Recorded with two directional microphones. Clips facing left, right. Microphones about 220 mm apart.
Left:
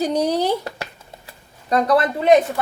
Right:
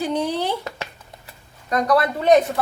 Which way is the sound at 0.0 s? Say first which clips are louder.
Left 3 dB; 40° left (ahead or behind).